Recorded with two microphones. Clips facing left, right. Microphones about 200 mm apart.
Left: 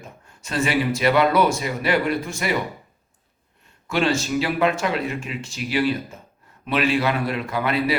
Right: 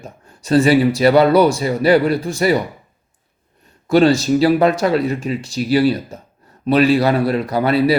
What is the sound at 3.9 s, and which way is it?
Speech, 35° right (ahead or behind).